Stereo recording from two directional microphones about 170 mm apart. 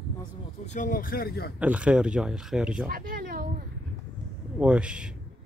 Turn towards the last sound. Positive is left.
turn(degrees=-5)  # may be behind; listen again after turning